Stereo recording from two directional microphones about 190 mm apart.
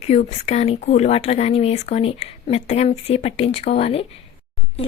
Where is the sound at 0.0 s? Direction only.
35° left (ahead or behind).